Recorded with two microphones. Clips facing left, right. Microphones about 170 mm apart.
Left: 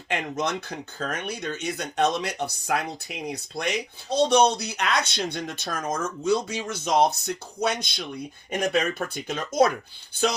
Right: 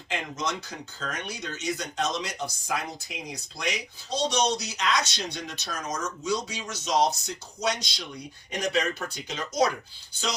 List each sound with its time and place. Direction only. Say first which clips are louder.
0.1 s speech: left 4 dB; 60° left (ahead or behind)